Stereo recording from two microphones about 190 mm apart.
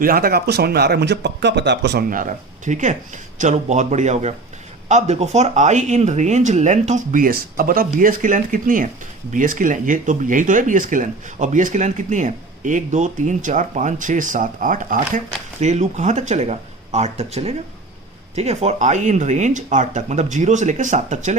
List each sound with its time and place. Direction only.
0.0 s speech: 50° right (ahead or behind)